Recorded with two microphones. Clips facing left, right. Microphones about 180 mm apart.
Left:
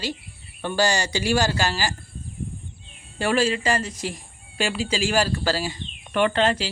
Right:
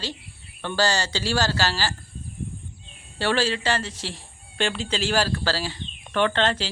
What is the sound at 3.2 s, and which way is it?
Speech, 10° left (ahead or behind).